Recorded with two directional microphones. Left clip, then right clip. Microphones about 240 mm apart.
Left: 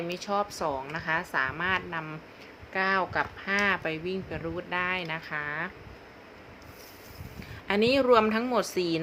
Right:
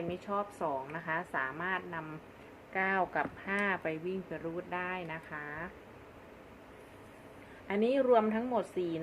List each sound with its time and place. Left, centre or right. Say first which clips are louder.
0.1 s a woman's voice: left 6 dB; centre
7.7 s a woman's voice: left 5 dB; left